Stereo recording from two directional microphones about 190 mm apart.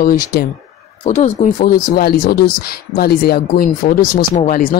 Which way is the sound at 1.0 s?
35° left (ahead or behind).